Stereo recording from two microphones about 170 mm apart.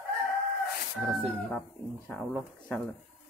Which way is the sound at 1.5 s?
Centre (ahead or behind).